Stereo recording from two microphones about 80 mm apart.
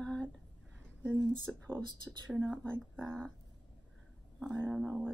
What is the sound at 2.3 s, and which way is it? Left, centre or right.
Speech, centre.